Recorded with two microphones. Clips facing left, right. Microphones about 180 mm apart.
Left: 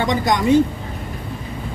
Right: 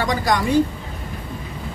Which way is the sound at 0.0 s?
20° left (ahead or behind).